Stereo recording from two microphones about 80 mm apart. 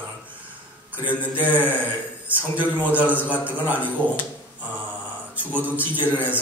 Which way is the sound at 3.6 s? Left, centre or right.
Right.